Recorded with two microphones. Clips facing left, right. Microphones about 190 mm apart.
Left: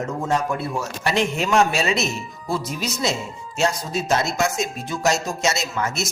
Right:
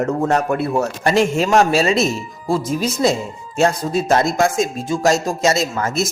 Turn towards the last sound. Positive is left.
turn(degrees=-50)  # may be behind; listen again after turning